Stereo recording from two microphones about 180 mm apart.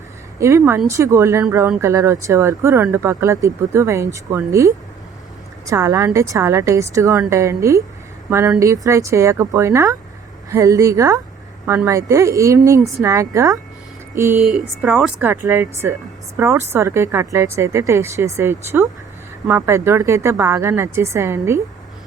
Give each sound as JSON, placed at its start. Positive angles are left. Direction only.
{"t": 0.3, "sound": "speech", "side_deg": -15}